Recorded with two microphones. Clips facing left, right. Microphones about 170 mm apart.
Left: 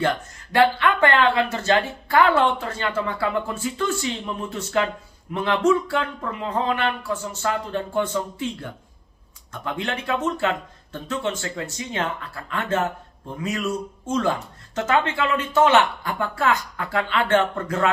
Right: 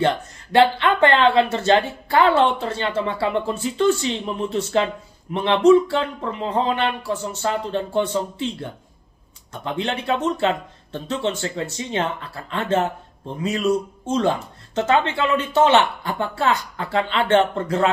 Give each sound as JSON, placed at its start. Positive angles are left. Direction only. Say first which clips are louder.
{"t": 0.0, "sound": "speech", "louder": "right 3 dB", "side_deg": -25}